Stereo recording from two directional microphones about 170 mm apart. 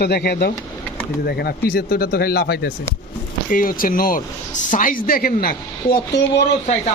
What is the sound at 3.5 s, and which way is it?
Speech, 55° left (ahead or behind).